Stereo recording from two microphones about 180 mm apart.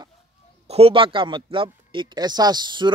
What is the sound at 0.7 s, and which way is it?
A man's voice, 35° right (ahead or behind).